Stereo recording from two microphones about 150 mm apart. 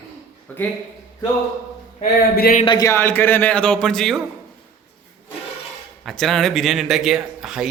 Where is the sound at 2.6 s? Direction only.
30° left (ahead or behind).